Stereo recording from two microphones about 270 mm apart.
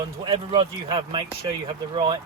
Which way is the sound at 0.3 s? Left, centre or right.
Centre.